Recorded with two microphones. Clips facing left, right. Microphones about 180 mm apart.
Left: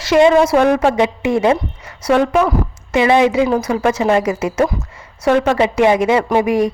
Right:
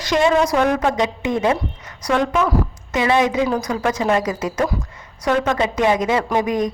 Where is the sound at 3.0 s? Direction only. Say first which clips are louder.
Left 5 dB; 25° left (ahead or behind).